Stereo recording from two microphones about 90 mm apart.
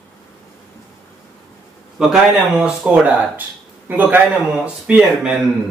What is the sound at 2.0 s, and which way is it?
A man's voice, 10° right (ahead or behind).